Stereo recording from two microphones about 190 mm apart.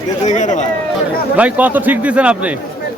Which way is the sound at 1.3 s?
10° right (ahead or behind).